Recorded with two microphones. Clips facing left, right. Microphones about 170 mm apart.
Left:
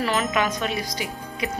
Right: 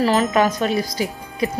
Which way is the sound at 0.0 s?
35° right (ahead or behind).